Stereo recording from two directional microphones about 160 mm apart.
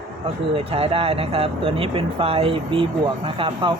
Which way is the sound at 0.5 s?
35° right (ahead or behind).